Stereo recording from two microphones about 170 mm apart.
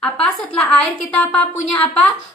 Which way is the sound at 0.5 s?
5° left (ahead or behind).